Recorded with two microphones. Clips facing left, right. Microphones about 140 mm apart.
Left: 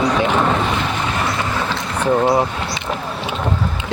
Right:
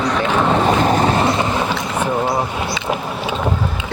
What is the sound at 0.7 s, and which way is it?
Boat, 40° right (ahead or behind).